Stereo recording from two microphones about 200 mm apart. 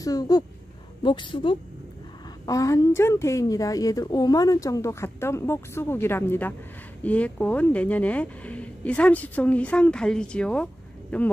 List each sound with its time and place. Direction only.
0.0 s a woman's voice: 20° left (ahead or behind)